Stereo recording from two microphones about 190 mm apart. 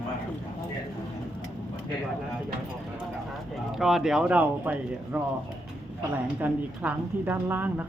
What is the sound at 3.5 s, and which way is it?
Speech, centre (ahead or behind).